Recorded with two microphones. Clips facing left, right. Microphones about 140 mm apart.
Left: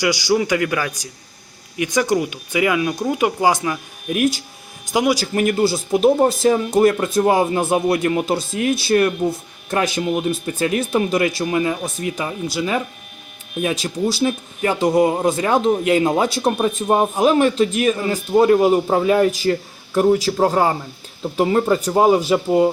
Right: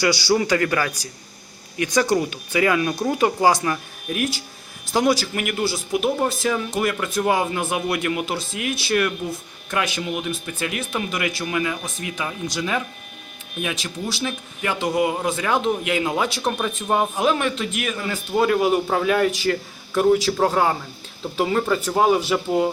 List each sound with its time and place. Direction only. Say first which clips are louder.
0.0 s speech: left 2 dB; 15° left (ahead or behind)
4.9 s speech: left 1 dB; 10° left (ahead or behind)
5.2 s speech: left 7 dB; 35° left (ahead or behind)
12.5 s speech: left 5 dB; 5° left (ahead or behind)
13.6 s speech: left 7 dB; 40° left (ahead or behind)
20.3 s speech: left 3 dB; 10° left (ahead or behind)